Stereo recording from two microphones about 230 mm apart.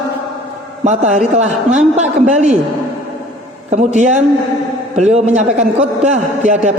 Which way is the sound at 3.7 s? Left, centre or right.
Right.